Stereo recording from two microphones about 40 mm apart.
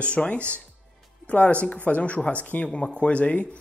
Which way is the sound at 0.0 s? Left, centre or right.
Left.